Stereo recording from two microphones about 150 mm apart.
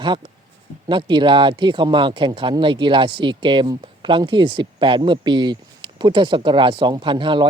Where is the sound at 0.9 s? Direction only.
30° right (ahead or behind).